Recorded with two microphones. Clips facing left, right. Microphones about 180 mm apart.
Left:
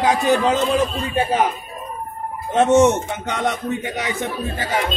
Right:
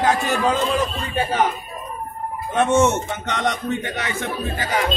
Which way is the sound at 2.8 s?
10° left (ahead or behind).